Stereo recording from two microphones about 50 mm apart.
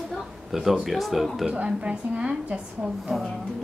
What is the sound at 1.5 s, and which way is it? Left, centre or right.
A woman's voice, right.